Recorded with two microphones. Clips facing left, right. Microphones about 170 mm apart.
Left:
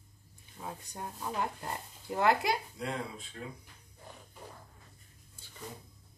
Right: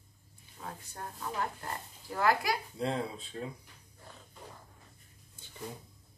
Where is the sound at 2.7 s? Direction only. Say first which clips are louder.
Right 4 dB; 30° right (ahead or behind).